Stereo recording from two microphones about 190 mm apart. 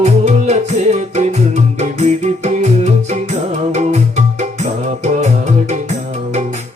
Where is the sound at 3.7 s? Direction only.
40° right (ahead or behind).